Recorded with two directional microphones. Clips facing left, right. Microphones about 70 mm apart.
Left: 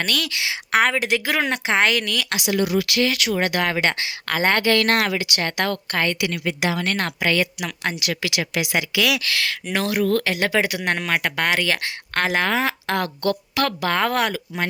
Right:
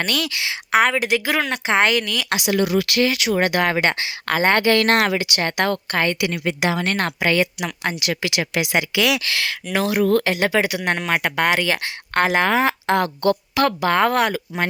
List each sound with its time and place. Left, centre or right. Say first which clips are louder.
0.0 s speech: right 1 dB; centre
0.9 s speech: right 2 dB; centre
1.2 s speech: right 1 dB; centre
2.5 s speech: right 1 dB; right
3.1 s a woman's voice: right 2 dB; centre
3.3 s a woman's voice: right 3 dB; right
7.9 s speech: right 2 dB; right
9.3 s a woman's voice: even; centre
9.6 s speech: right 3 dB; centre
10.0 s a woman's voice: right 3 dB; right
10.4 s speech: right 2 dB; centre
11.1 s a woman's voice: right 4 dB; centre
14.3 s speech: right 2 dB; right